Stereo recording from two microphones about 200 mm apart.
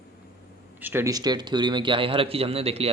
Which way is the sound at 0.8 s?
10° right (ahead or behind).